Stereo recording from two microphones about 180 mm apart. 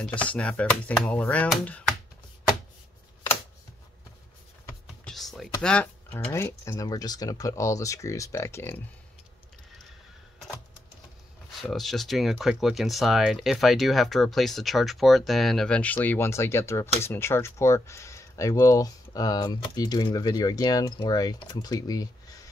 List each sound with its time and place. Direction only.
0.0 s speech: 5° left (ahead or behind)
5.0 s a sound: centre (ahead or behind)
5.6 s speech: 5° left (ahead or behind)
11.6 s speech: centre (ahead or behind); by 22.4 s 20° left (ahead or behind)